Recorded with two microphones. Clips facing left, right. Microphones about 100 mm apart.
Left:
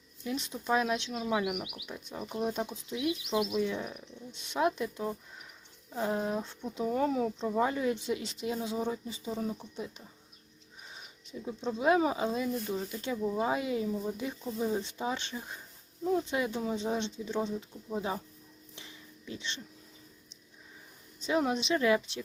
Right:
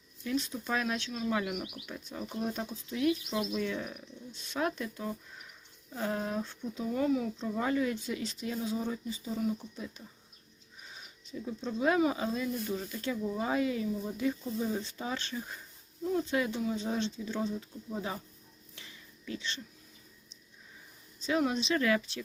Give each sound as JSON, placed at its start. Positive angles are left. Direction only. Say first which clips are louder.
{"t": 0.3, "sound": "speech", "louder": "left 1 dB", "side_deg": 20}
{"t": 6.8, "sound": "speech", "louder": "left 1 dB", "side_deg": 35}
{"t": 11.3, "sound": "speech", "louder": "left 1 dB", "side_deg": 20}
{"t": 18.8, "sound": "a sound", "louder": "left 2 dB", "side_deg": 25}
{"t": 21.2, "sound": "speech", "louder": "left 1 dB", "side_deg": 25}